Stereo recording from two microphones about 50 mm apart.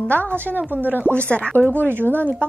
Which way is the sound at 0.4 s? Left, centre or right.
Right.